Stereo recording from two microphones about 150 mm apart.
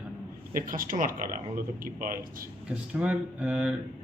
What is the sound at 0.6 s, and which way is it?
Speech, 70° right (ahead or behind).